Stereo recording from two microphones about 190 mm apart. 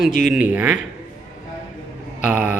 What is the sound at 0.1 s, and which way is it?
Speech, 40° left (ahead or behind).